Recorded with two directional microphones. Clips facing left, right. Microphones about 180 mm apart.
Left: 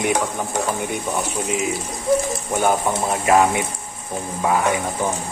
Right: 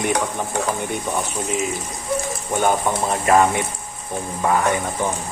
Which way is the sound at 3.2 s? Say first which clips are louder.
Even; 5° left (ahead or behind).